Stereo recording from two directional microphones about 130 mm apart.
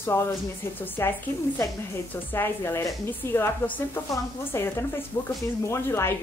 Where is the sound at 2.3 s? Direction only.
20° left (ahead or behind).